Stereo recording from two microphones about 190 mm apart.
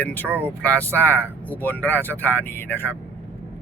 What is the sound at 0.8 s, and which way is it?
Speech, 10° left (ahead or behind).